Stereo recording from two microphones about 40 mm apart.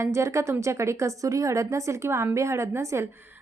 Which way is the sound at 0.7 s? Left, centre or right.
Right.